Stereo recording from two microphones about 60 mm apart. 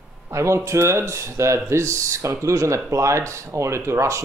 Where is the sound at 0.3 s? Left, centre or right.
Right.